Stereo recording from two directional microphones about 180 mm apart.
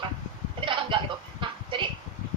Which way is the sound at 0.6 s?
30° right (ahead or behind).